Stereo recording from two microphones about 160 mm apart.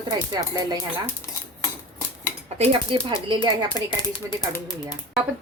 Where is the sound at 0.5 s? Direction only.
20° right (ahead or behind).